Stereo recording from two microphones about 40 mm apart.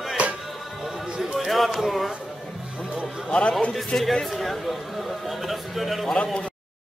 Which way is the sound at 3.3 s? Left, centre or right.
Left.